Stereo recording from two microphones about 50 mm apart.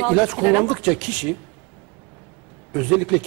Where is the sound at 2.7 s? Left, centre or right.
Centre.